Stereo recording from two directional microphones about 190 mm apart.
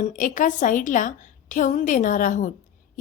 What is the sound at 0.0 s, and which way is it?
A woman's voice, 45° left (ahead or behind).